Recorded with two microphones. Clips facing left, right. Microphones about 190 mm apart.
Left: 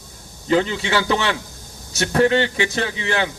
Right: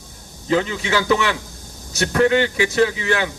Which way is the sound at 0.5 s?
30° left (ahead or behind).